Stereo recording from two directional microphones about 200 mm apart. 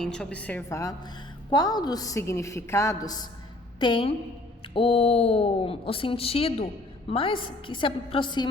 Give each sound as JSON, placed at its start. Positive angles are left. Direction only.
{"t": 0.0, "sound": "a woman's voice", "side_deg": 5}